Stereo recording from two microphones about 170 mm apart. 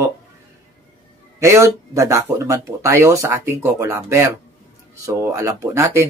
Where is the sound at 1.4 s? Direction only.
20° right (ahead or behind).